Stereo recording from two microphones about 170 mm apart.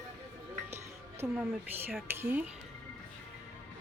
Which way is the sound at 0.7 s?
15° right (ahead or behind).